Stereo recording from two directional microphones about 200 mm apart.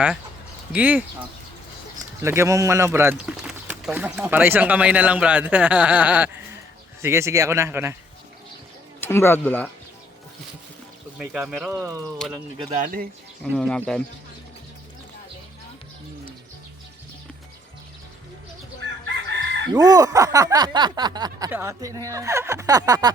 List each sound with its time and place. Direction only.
0.7 s speech: 5° right (ahead or behind)
2.2 s speech: 15° right (ahead or behind)
9.0 s speech: 10° left (ahead or behind)
11.2 s speech: centre (ahead or behind); by 12.7 s 20° right (ahead or behind)
12.7 s speech: 40° right (ahead or behind)
13.6 s speech: 5° left (ahead or behind)
19.0 s chicken: 60° right (ahead or behind)
19.7 s speech: 20° right (ahead or behind)